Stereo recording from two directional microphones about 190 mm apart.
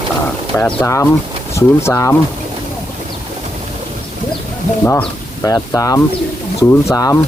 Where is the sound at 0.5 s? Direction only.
10° left (ahead or behind).